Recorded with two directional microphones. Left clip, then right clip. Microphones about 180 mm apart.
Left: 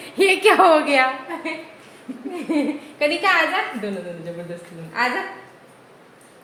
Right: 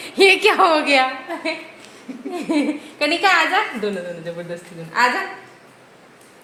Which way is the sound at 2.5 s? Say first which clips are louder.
Right 2 dB; 25° right (ahead or behind).